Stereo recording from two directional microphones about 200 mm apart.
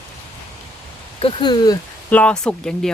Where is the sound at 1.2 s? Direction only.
25° left (ahead or behind).